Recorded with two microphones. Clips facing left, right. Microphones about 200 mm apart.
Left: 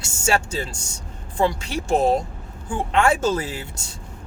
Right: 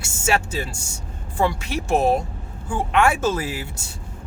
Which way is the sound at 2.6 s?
25° left (ahead or behind).